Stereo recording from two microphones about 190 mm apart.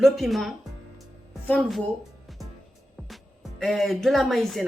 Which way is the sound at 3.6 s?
Centre (ahead or behind).